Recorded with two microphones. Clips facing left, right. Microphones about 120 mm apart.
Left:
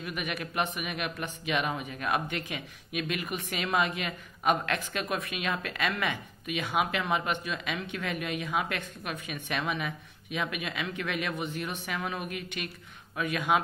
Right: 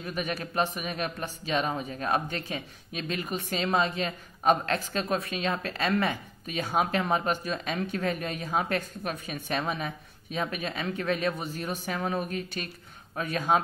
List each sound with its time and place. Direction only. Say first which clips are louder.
0.0 s speech: right 3 dB; 30° right (ahead or behind)